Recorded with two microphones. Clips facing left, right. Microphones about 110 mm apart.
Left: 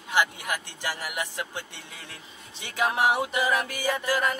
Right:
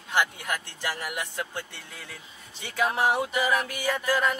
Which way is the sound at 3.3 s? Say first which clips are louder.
Even; centre (ahead or behind).